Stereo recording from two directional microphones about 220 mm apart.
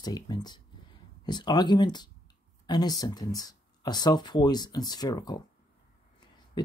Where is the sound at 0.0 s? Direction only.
20° left (ahead or behind).